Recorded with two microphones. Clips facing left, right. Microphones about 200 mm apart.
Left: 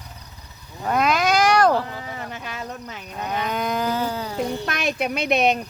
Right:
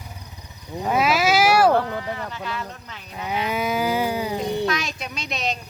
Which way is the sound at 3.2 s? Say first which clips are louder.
Right 1 dB; 10° right (ahead or behind).